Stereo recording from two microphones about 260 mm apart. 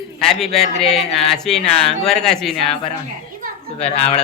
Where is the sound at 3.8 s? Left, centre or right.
Left.